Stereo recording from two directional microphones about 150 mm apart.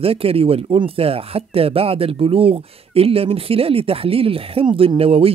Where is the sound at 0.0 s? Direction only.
40° right (ahead or behind).